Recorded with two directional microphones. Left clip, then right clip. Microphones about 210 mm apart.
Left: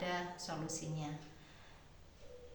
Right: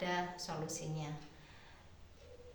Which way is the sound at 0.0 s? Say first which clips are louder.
Right 2 dB; 15° right (ahead or behind).